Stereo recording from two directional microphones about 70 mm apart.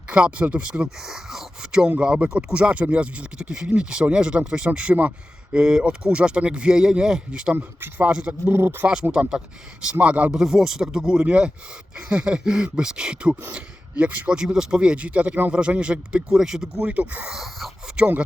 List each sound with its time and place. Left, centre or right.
0.1 s speech: centre
0.9 s speech: centre
7.5 s a man's voice: right
8.5 s speech: right
9.8 s a man's voice: centre
10.3 s speech: centre
16.9 s a man's voice: right
17.3 s speech: centre